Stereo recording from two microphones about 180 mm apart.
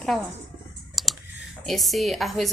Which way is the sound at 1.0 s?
Centre (ahead or behind).